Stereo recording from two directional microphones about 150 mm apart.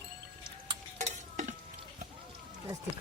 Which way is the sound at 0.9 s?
55° right (ahead or behind).